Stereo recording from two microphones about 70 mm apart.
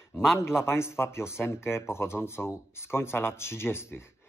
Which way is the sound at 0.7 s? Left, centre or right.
Left.